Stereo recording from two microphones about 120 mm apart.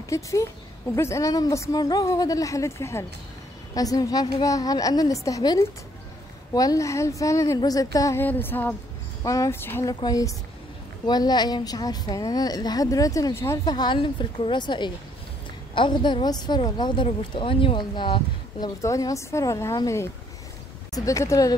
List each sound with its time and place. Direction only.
0.1 s a woman's voice: 25° left (ahead or behind)
8.2 s a sound: 15° left (ahead or behind)
9.2 s speech: 30° left (ahead or behind)
9.9 s a woman's voice: 30° left (ahead or behind)
13.7 s a woman's voice: 40° left (ahead or behind)
18.8 s speech: 30° left (ahead or behind)